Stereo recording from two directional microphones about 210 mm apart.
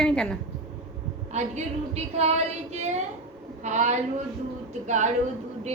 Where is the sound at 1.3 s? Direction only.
35° right (ahead or behind).